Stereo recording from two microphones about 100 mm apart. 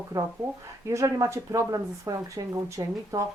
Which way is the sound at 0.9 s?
30° right (ahead or behind).